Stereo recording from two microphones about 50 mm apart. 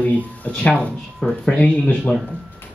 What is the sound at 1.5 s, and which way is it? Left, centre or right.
Speech, left.